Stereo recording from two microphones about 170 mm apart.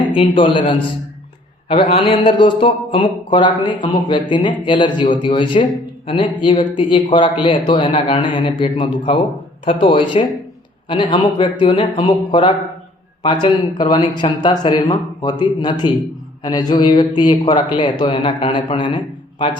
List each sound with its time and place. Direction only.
0.1 s speech: 30° left (ahead or behind)
11.7 s speech: 40° left (ahead or behind)
12.0 s speech: 25° left (ahead or behind)